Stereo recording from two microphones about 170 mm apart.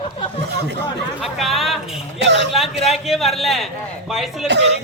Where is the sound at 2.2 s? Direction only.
90° right.